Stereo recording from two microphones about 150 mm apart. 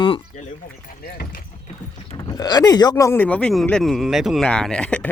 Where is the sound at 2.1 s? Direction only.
25° left (ahead or behind); by 5.0 s 5° left (ahead or behind).